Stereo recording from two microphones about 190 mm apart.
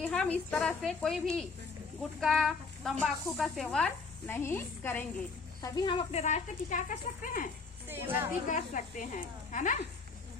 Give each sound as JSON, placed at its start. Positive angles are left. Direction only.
{"t": 0.0, "sound": "speech", "side_deg": 5}
{"t": 5.6, "sound": "speech", "side_deg": 25}
{"t": 8.0, "sound": "speech", "side_deg": -10}
{"t": 8.4, "sound": "speech", "side_deg": 40}